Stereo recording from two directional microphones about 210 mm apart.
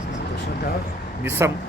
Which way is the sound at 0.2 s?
55° left (ahead or behind).